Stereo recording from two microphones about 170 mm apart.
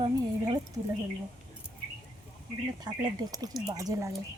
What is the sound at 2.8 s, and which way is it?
A woman's voice, 20° right (ahead or behind).